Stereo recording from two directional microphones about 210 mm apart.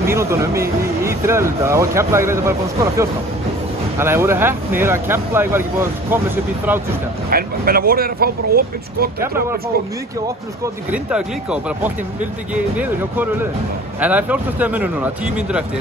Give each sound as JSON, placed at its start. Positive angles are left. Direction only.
{"t": 0.0, "sound": "speech", "side_deg": -15}
{"t": 7.2, "sound": "speech", "side_deg": -45}
{"t": 10.9, "sound": "speech", "side_deg": -5}